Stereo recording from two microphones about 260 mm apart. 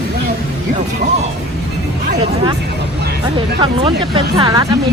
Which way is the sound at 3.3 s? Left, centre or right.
Centre.